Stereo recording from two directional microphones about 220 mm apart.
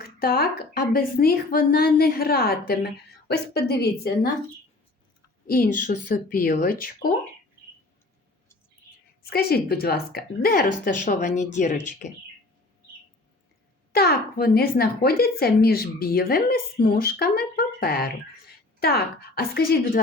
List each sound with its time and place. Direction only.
0.0 s speech: 45° left (ahead or behind)
5.5 s speech: 40° left (ahead or behind)
9.3 s speech: 45° left (ahead or behind)
13.9 s speech: 45° left (ahead or behind)